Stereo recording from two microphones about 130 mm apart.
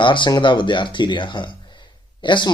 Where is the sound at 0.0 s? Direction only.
40° left (ahead or behind).